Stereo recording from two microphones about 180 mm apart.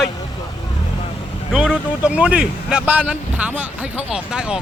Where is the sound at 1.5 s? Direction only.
5° right (ahead or behind).